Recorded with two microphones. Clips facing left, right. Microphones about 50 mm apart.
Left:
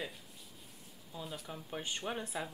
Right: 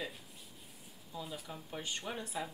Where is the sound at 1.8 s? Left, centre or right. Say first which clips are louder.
Left 2 dB; left.